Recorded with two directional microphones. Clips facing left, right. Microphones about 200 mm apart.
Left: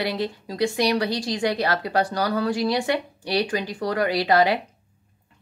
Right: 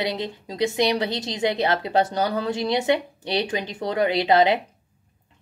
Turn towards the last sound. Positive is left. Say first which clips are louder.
# right 1 dB
turn(degrees=-20)  # may be behind; listen again after turning